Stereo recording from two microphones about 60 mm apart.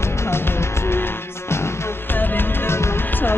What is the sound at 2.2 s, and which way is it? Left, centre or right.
Music, left.